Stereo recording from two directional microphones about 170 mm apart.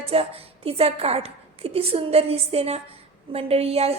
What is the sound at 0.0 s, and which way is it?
A woman's voice, 35° right (ahead or behind).